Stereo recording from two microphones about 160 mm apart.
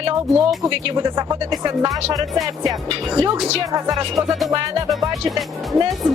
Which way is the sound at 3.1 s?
20° right (ahead or behind).